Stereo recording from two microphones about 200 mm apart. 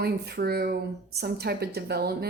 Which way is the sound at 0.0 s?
50° right (ahead or behind).